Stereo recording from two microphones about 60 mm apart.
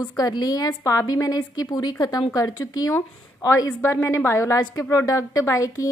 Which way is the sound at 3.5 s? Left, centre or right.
Left.